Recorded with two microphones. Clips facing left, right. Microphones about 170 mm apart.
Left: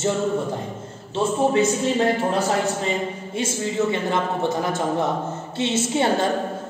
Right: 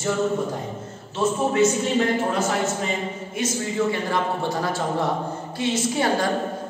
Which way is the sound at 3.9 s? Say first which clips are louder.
Left 1 dB; 20° left (ahead or behind).